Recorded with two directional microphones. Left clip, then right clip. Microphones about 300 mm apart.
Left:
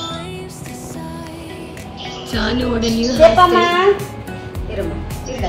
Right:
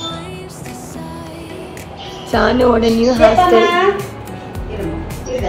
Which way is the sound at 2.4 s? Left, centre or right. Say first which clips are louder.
Right 7 dB; centre.